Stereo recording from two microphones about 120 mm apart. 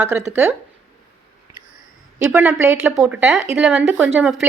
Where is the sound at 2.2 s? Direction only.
10° right (ahead or behind).